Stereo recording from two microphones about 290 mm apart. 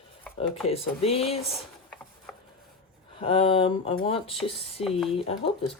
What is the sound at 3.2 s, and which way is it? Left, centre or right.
Speech, centre.